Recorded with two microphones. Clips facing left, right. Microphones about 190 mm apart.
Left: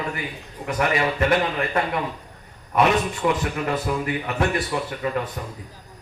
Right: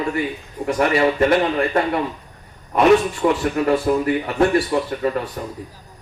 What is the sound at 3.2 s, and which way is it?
Speech, 40° right (ahead or behind).